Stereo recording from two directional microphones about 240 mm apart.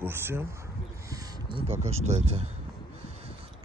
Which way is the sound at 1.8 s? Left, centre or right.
Right.